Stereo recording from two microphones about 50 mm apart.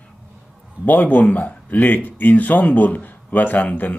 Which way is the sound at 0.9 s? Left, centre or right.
Left.